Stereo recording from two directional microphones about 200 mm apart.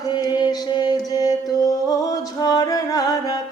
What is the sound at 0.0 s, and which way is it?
Music, 20° left (ahead or behind).